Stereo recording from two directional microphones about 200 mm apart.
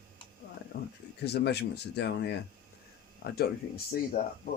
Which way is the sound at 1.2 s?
55° left (ahead or behind).